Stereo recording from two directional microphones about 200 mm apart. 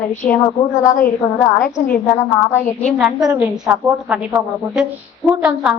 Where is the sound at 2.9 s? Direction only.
5° right (ahead or behind).